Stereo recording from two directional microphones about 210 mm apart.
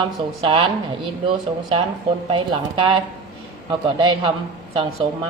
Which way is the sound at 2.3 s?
25° right (ahead or behind).